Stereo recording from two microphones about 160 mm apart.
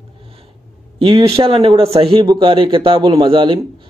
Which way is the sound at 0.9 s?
30° right (ahead or behind).